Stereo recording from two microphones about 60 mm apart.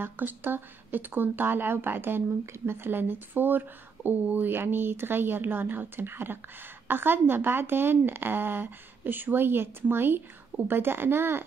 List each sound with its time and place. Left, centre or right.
0.0 s speech: right